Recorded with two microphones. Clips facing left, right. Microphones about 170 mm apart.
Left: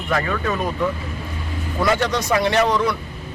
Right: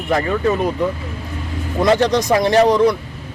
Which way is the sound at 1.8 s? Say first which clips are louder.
Right 5 dB; 20° right (ahead or behind).